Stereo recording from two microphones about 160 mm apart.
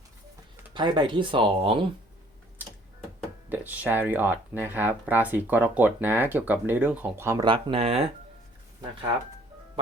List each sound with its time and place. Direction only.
0.7 s speech: 30° right (ahead or behind)
3.5 s speech: 10° right (ahead or behind)
7.4 s speech: 35° right (ahead or behind)